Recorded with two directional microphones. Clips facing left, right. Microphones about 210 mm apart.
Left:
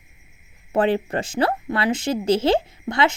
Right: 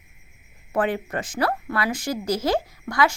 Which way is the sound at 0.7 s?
25° left (ahead or behind).